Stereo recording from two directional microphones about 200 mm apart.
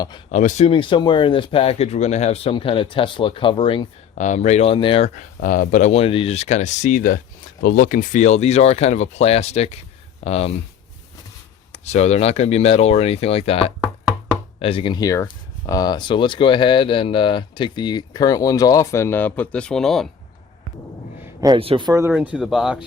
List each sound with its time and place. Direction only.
0.3 s speech: 35° left (ahead or behind)
4.1 s speech: 35° left (ahead or behind)
11.7 s speech: 35° left (ahead or behind); by 20.1 s centre (ahead or behind)
21.4 s speech: 25° right (ahead or behind)
22.1 s speech: 5° right (ahead or behind)